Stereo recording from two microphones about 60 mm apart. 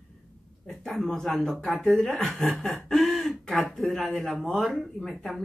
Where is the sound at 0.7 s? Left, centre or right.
Centre.